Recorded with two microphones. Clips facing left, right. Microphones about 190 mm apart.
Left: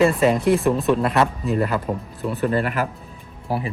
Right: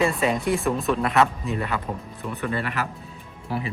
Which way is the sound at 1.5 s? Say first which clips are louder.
Left 7 dB; 40° left (ahead or behind).